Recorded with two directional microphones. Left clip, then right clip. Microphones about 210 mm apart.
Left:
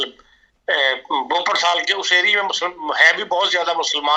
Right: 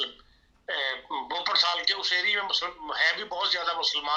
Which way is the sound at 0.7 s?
55° left (ahead or behind).